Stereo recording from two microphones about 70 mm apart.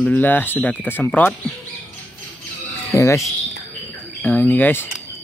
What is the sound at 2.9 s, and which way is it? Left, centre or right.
Speech, left.